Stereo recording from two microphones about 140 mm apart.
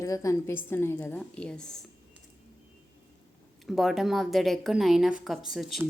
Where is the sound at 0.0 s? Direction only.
20° left (ahead or behind); by 1.7 s 5° left (ahead or behind).